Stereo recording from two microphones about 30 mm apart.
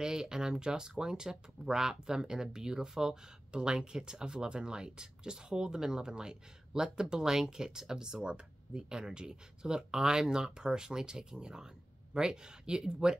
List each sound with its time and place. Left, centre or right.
0.0 s speech: right
3.5 s speech: right